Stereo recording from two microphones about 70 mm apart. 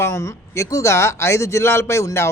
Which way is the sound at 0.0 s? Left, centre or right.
Left.